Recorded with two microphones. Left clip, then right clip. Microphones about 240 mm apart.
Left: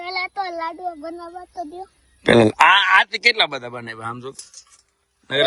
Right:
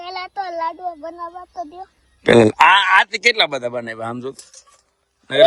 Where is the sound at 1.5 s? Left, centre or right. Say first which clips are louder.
Right 1 dB; centre.